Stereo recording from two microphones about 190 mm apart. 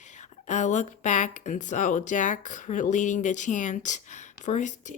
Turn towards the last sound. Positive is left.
turn(degrees=40)  # may be behind; listen again after turning